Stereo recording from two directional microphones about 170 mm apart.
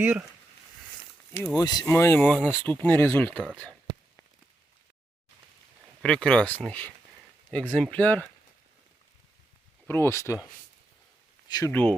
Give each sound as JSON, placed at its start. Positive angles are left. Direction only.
{"t": 0.0, "sound": "speech", "side_deg": -10}
{"t": 1.5, "sound": "speech", "side_deg": 25}
{"t": 6.0, "sound": "speech", "side_deg": 5}
{"t": 9.8, "sound": "speech", "side_deg": 15}
{"t": 11.4, "sound": "speech", "side_deg": 25}
{"t": 11.7, "sound": "speech", "side_deg": 10}